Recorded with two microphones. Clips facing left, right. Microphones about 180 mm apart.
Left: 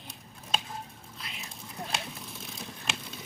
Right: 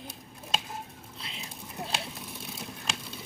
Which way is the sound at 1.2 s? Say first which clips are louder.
Right 1 dB; 30° right (ahead or behind).